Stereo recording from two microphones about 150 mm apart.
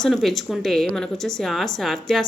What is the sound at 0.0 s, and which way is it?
Speech, centre (ahead or behind).